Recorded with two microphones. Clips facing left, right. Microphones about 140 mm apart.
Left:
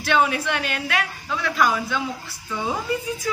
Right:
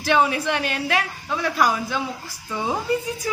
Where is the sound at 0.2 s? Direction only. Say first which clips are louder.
Right 1 dB; 30° right (ahead or behind).